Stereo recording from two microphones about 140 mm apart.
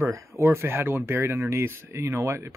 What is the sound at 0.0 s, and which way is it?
Speech, 20° right (ahead or behind).